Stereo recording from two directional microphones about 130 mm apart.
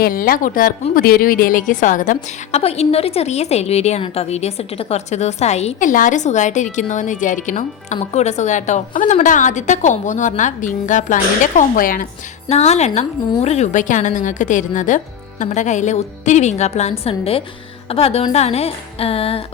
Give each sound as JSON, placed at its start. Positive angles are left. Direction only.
{"t": 0.1, "sound": "a woman's voice", "side_deg": 90}
{"t": 2.6, "sound": "a woman's voice", "side_deg": 50}
{"t": 5.8, "sound": "a woman's voice", "side_deg": 85}
{"t": 12.5, "sound": "a woman's voice", "side_deg": 55}